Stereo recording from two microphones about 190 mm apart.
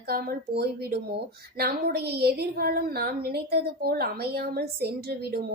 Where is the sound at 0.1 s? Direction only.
55° right (ahead or behind).